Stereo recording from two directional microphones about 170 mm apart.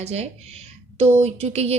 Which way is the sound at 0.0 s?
40° right (ahead or behind).